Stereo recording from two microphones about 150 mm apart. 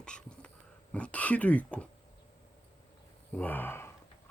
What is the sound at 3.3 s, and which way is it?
Speech, 10° left (ahead or behind).